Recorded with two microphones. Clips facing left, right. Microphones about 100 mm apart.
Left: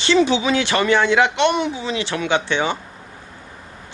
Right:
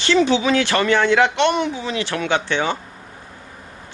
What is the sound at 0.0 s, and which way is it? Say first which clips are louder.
Speech: even; 20° left (ahead or behind).